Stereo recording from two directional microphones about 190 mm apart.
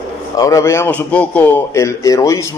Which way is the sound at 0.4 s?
15° left (ahead or behind).